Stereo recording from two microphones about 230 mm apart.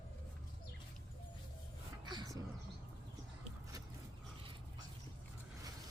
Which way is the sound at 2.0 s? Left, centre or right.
Centre.